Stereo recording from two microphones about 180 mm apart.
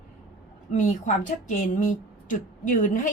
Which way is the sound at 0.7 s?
45° left (ahead or behind).